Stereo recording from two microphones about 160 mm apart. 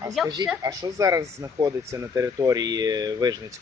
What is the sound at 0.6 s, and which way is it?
Speech, 20° right (ahead or behind).